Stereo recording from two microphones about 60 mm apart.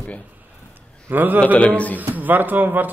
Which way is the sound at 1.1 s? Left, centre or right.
Right.